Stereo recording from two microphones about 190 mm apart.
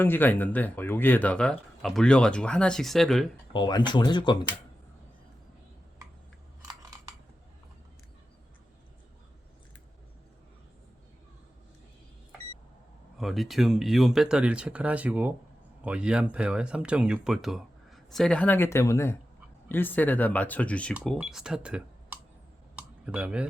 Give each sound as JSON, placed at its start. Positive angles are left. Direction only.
{"t": 0.0, "sound": "speech", "side_deg": 10}
{"t": 3.5, "sound": "speech", "side_deg": 25}
{"t": 13.1, "sound": "speech", "side_deg": 0}
{"t": 22.7, "sound": "a sound", "side_deg": -5}